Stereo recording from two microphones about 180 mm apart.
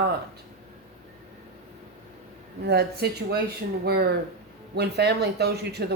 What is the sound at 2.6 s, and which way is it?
Speech, 65° right (ahead or behind).